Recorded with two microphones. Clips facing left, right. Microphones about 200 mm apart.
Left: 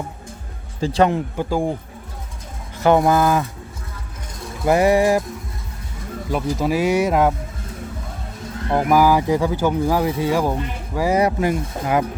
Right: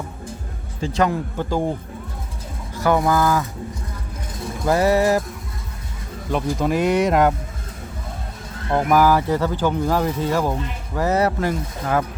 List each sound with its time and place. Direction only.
0.8 s a man's voice: 30° left (ahead or behind)
1.4 s speech: 10° left (ahead or behind)
2.7 s speech: 25° left (ahead or behind)
4.6 s speech: 15° left (ahead or behind)
6.3 s speech: 5° left (ahead or behind)
8.7 s speech: 10° left (ahead or behind)